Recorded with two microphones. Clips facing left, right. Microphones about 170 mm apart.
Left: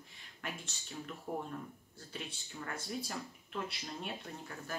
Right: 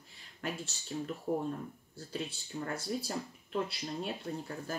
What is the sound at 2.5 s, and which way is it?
Speech, 35° right (ahead or behind).